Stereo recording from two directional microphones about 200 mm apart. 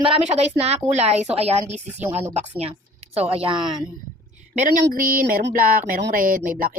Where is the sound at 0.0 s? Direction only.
30° right (ahead or behind).